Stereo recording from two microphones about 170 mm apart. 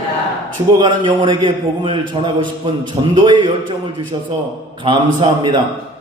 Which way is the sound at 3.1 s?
25° right (ahead or behind).